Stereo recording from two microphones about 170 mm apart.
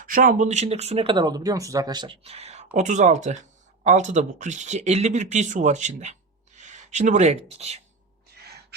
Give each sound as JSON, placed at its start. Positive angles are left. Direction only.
{"t": 0.0, "sound": "speech", "side_deg": -50}